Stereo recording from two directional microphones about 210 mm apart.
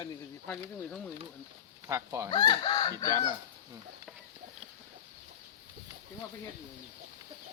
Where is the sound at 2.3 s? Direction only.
20° left (ahead or behind).